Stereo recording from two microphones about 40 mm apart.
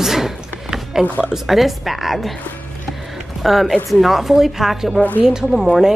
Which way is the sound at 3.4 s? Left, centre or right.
Centre.